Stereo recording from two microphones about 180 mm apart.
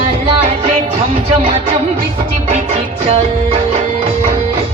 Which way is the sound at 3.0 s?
35° right (ahead or behind).